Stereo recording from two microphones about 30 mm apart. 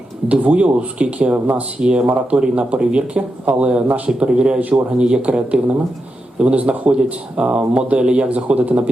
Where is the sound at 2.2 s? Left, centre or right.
Right.